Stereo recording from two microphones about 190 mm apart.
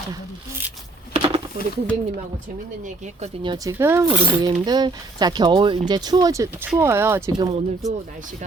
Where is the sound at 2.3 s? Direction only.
40° right (ahead or behind).